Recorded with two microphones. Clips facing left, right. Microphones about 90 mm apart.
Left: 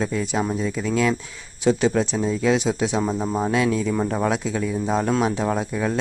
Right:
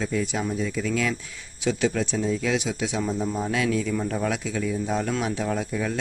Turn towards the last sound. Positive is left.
turn(degrees=40)  # may be behind; listen again after turning